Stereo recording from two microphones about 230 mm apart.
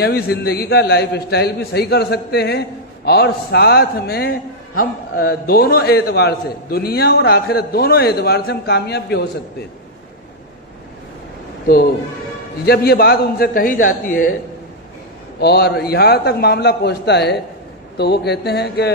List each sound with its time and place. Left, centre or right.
0.0 s a man's voice: left
12.6 s a man's voice: left
15.3 s a man's voice: left